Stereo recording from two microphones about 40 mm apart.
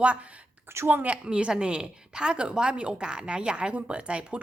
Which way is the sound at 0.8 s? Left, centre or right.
Right.